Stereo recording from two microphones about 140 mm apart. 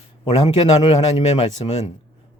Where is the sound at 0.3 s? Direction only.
45° left (ahead or behind).